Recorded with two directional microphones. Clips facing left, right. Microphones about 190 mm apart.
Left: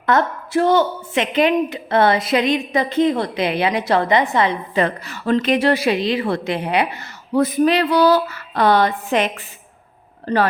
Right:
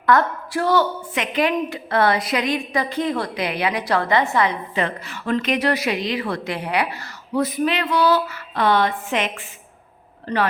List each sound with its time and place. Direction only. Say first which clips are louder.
0.0 s a woman's voice: even; 25° left (ahead or behind)
4.7 s a woman's voice: left 5 dB; 40° left (ahead or behind); by 7.1 s 20° left (ahead or behind)
7.3 s a sound: left 5 dB; 45° left (ahead or behind)